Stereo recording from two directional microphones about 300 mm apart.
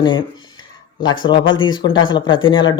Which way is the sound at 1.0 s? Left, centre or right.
Centre.